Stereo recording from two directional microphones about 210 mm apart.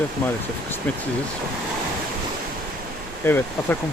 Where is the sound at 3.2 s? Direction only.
10° left (ahead or behind).